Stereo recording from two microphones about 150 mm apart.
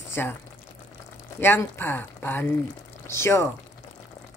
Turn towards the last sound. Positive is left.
turn(degrees=15)  # may be behind; listen again after turning